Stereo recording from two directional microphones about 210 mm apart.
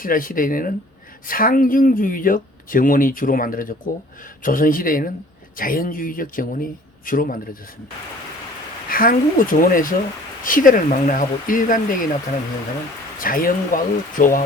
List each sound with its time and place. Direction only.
0.0 s speech: 40° left (ahead or behind)
8.9 s speech: 40° left (ahead or behind)
13.1 s speech: 40° left (ahead or behind)